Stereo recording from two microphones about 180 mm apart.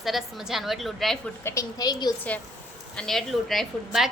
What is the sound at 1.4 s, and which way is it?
Speech, 20° left (ahead or behind).